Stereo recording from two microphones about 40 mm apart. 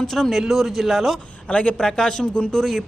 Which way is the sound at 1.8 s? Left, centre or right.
Centre.